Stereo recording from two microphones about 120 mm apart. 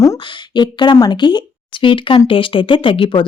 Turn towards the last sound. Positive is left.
turn(degrees=45)  # may be behind; listen again after turning